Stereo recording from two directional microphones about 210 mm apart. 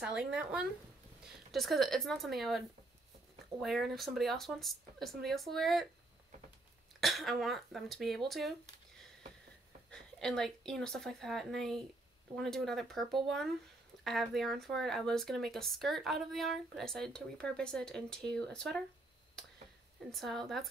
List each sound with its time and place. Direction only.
0.0 s speech: 5° right (ahead or behind)
3.6 s speech: centre (ahead or behind)
7.0 s speech: centre (ahead or behind)
9.8 s a woman's voice: 5° left (ahead or behind)
20.1 s speech: centre (ahead or behind)